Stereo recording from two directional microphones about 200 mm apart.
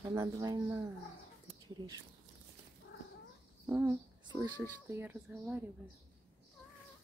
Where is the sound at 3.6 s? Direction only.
15° right (ahead or behind).